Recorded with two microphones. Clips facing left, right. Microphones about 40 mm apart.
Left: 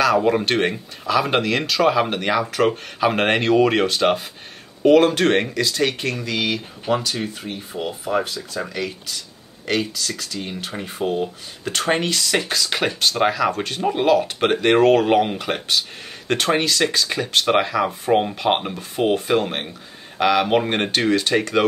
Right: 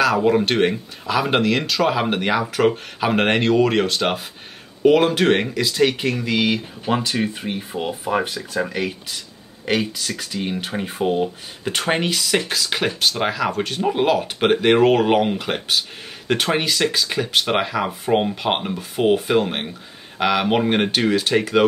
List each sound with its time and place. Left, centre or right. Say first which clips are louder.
0.0 s speech: even; centre
6.9 s speech: right 1 dB; right; by 21.6 s centre